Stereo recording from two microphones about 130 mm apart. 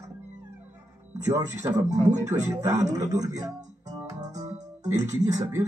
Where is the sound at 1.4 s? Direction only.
60° right (ahead or behind).